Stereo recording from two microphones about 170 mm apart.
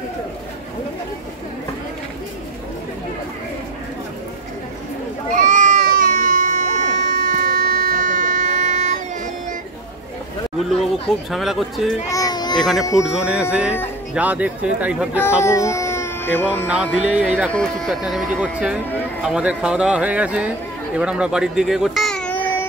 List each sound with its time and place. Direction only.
5.3 s goat: 45° right (ahead or behind)
11.2 s speech: centre (ahead or behind)
12.1 s baby cry: 20° left (ahead or behind)
12.5 s speech: centre (ahead or behind)
15.4 s speech: 20° left (ahead or behind)
16.6 s speech: 5° right (ahead or behind)
17.5 s speech: 5° left (ahead or behind)